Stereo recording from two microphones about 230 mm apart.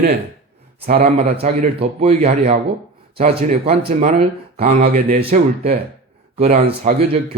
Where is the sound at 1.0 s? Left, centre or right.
Right.